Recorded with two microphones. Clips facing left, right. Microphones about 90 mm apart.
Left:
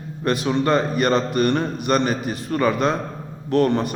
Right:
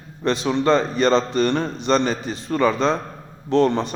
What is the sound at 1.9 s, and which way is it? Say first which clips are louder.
Speech: even; 15° left (ahead or behind).